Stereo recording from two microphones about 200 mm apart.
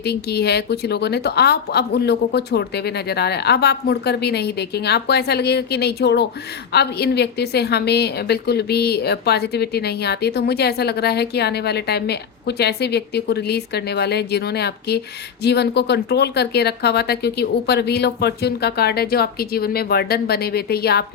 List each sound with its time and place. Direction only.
0.0 s a woman's voice: 55° left (ahead or behind)